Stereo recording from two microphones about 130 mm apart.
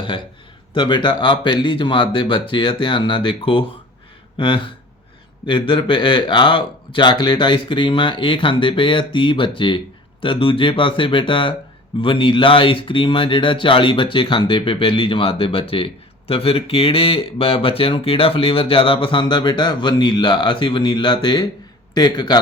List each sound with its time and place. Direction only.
0.7 s speech: 35° left (ahead or behind)